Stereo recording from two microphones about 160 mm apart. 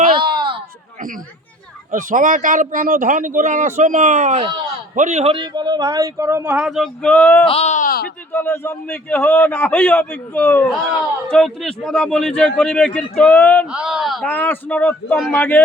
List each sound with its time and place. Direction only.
0.1 s a sound: 30° right (ahead or behind)
1.9 s a man's voice: 55° right (ahead or behind); by 7.4 s 10° left (ahead or behind)
7.4 s speech: 40° left (ahead or behind); by 8.1 s 65° left (ahead or behind)
8.3 s a man's voice: 15° left (ahead or behind)
13.7 s a man's voice: 5° right (ahead or behind)
14.3 s a man's voice: 10° left (ahead or behind)